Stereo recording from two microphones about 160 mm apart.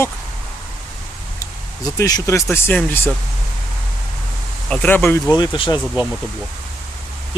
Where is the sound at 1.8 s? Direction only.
20° left (ahead or behind).